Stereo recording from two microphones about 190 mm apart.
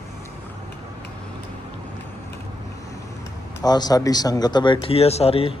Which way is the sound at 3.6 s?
20° left (ahead or behind).